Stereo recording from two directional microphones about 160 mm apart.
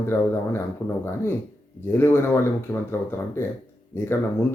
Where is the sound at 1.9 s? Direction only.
15° left (ahead or behind).